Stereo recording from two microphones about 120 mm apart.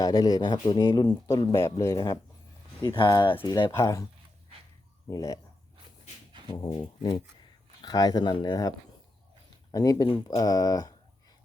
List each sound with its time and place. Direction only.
0.0 s speech: 30° left (ahead or behind)
2.8 s speech: 40° left (ahead or behind)
3.8 s speech: 25° left (ahead or behind)
5.0 s speech: 30° left (ahead or behind)
6.5 s speech: 40° left (ahead or behind)
9.7 s speech: 30° left (ahead or behind)